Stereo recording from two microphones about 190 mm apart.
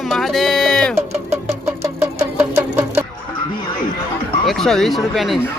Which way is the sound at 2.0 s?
15° right (ahead or behind).